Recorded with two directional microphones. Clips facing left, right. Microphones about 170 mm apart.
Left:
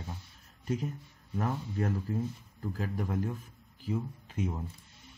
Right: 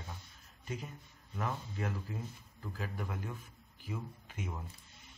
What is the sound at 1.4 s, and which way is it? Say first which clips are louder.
Speech: left 6 dB; 40° left (ahead or behind).